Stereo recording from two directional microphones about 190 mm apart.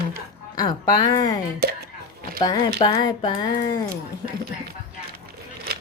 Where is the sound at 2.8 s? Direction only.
20° left (ahead or behind).